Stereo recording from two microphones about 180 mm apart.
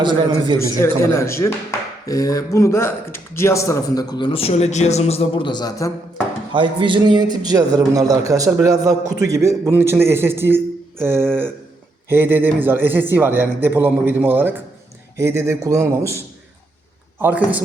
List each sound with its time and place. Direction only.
0.0 s a man's voice: 25° right (ahead or behind)
0.6 s speech: 15° left (ahead or behind)
6.5 s a man's voice: 25° right (ahead or behind)
17.2 s a man's voice: 10° right (ahead or behind)